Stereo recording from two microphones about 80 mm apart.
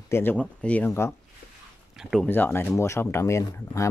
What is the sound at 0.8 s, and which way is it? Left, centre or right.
Speech, left.